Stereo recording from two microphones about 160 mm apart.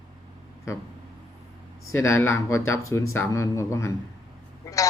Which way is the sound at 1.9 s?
15° left (ahead or behind).